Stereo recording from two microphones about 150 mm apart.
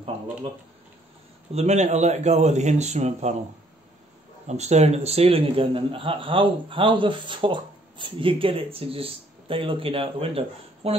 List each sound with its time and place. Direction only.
1.5 s speech: 45° right (ahead or behind)
4.5 s a man's voice: 50° right (ahead or behind)